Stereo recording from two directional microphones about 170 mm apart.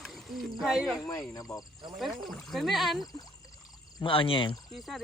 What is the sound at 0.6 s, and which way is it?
Speech, centre (ahead or behind).